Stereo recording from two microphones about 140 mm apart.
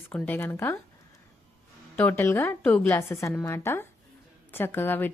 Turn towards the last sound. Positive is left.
turn(degrees=15)  # may be behind; listen again after turning